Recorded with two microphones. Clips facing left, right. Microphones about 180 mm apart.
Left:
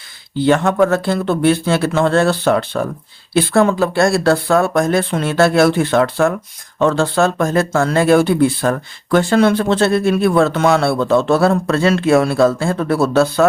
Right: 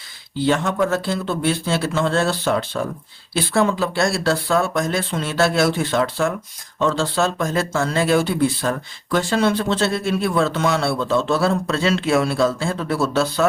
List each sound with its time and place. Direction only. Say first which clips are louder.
0.3 s speech: left 6 dB; 60° left (ahead or behind)